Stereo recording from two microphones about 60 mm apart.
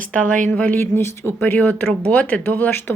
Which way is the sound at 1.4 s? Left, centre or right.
Left.